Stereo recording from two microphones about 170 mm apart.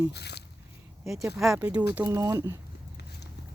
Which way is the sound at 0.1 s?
75° left (ahead or behind).